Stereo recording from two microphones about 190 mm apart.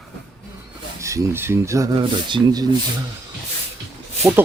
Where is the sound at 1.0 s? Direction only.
15° right (ahead or behind).